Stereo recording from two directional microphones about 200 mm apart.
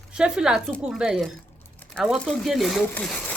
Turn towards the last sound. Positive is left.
turn(degrees=5)  # may be behind; listen again after turning